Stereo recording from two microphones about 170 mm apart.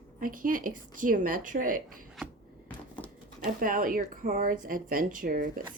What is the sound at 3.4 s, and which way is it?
A woman's voice, 55° right (ahead or behind).